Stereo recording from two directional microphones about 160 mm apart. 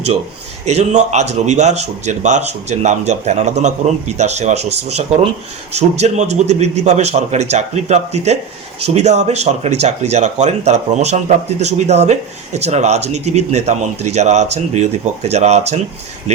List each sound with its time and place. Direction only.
0.6 s speech: 45° right (ahead or behind)